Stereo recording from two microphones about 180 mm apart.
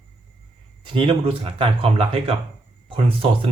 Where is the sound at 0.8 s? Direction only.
30° right (ahead or behind).